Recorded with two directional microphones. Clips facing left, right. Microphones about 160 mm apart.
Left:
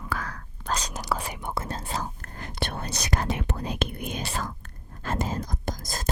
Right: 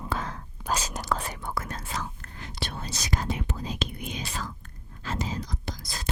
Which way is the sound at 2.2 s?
55° left (ahead or behind).